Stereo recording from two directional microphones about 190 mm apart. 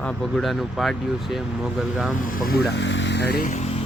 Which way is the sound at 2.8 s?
70° left (ahead or behind).